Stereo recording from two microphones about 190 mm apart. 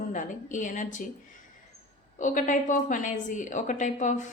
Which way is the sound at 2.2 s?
40° left (ahead or behind).